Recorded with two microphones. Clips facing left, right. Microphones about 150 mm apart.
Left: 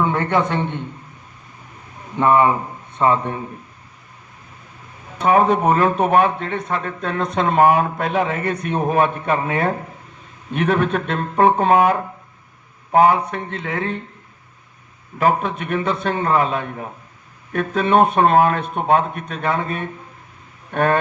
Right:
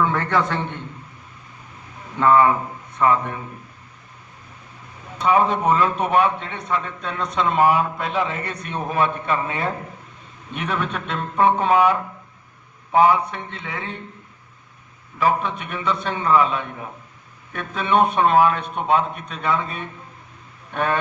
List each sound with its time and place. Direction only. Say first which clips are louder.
0.0 s a man's voice: left 2 dB; 20° left (ahead or behind)
2.1 s a man's voice: left 1 dB; 20° left (ahead or behind)
3.0 s a man's voice: left 2 dB; 30° left (ahead or behind)
5.2 s a man's voice: left 3 dB; 45° left (ahead or behind)
15.2 s a man's voice: left 2 dB; 45° left (ahead or behind)